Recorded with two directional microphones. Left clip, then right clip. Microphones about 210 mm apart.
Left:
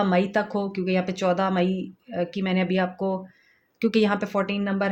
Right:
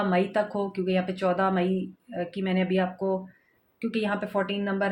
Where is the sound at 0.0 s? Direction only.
50° left (ahead or behind).